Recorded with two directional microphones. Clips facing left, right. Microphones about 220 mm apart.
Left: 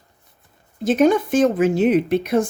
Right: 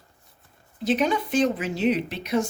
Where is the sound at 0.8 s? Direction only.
45° left (ahead or behind).